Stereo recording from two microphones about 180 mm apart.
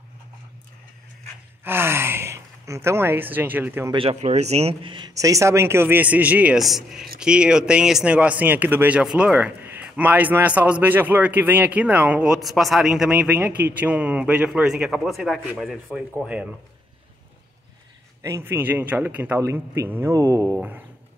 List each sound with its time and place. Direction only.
1.6 s speech: 10° right (ahead or behind)
3.9 s speech: 35° right (ahead or behind); by 16.4 s 5° right (ahead or behind)
18.2 s speech: 15° right (ahead or behind)